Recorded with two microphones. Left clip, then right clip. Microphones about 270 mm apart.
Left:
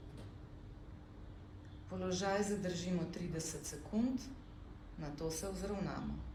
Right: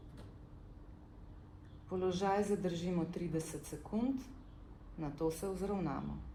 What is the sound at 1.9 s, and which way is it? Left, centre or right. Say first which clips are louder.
Speech: right 3 dB; right.